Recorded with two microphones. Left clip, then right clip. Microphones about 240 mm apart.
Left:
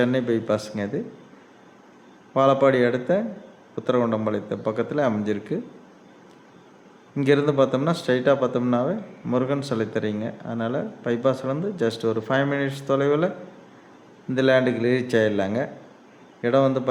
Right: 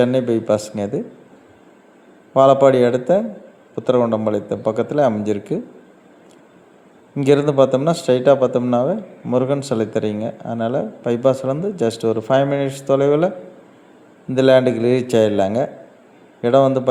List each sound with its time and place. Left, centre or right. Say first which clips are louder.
0.0 s a man's voice: right 6 dB; centre
2.3 s a man's voice: right 7 dB; centre
7.2 s a man's voice: right 5 dB; centre
14.3 s a man's voice: right 6 dB; centre